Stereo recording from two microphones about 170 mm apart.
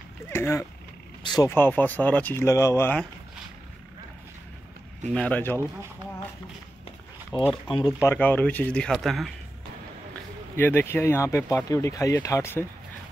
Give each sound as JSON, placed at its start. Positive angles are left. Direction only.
{"t": 0.3, "sound": "speech", "side_deg": 15}
{"t": 1.5, "sound": "speech", "side_deg": 10}
{"t": 5.1, "sound": "speech", "side_deg": 10}
{"t": 7.6, "sound": "speech", "side_deg": 25}
{"t": 10.5, "sound": "speech", "side_deg": 15}